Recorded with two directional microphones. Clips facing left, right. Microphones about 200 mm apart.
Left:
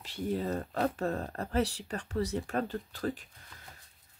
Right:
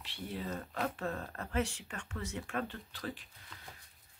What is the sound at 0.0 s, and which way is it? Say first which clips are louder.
Speech: left 8 dB; 45° left (ahead or behind).